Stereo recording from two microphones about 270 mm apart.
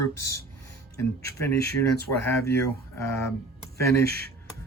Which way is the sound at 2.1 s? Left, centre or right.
Centre.